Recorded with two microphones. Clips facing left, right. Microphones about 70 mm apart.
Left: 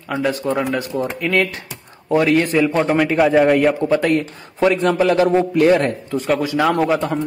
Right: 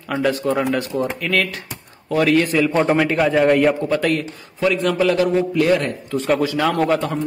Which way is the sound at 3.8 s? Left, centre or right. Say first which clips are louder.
Left 3 dB; left.